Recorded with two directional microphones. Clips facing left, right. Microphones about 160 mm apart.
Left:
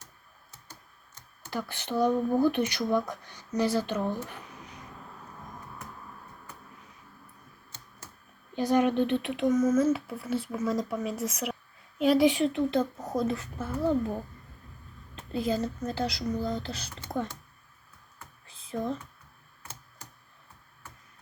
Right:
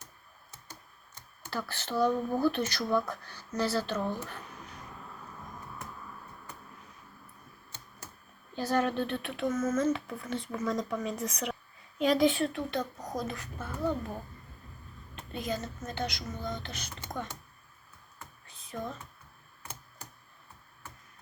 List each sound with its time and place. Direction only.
1.5 s speech: 15° left (ahead or behind)
8.5 s speech: 15° left (ahead or behind)
15.3 s speech: 30° left (ahead or behind)
18.4 s a sound: 30° left (ahead or behind)